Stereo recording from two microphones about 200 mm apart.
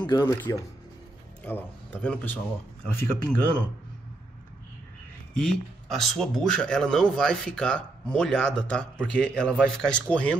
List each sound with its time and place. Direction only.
0.0 s speech: 20° left (ahead or behind)
5.3 s speech: centre (ahead or behind)